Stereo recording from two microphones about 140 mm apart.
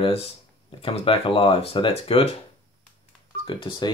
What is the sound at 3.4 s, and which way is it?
Speech, 35° left (ahead or behind).